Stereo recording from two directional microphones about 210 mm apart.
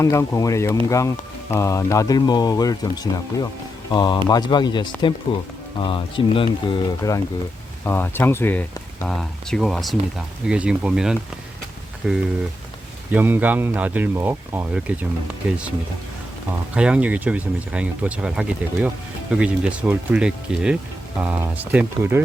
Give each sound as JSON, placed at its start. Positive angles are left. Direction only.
{"t": 0.0, "sound": "speech", "side_deg": 15}
{"t": 16.7, "sound": "speech", "side_deg": -5}